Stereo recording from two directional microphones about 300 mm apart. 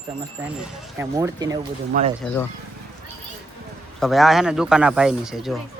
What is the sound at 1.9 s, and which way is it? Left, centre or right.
Speech, right.